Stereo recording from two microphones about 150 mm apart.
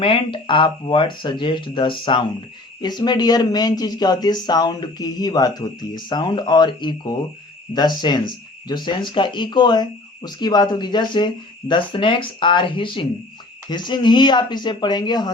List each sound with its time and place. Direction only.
0.0 s speech: 35° left (ahead or behind)